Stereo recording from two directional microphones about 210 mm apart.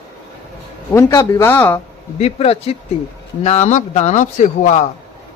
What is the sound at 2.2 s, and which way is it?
Speech, 30° left (ahead or behind).